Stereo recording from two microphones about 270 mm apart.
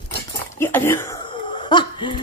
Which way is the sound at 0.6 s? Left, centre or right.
Centre.